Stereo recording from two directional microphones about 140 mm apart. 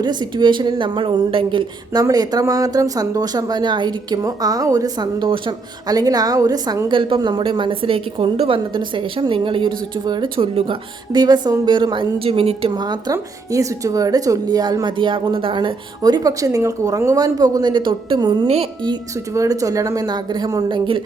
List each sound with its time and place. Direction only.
0.0 s speech: 30° right (ahead or behind)
11.1 s a woman's voice: 30° right (ahead or behind)
18.4 s a woman's voice: 45° right (ahead or behind)
18.9 s a woman's voice: 25° right (ahead or behind)